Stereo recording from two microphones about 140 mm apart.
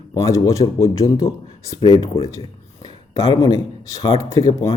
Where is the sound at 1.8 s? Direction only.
35° left (ahead or behind).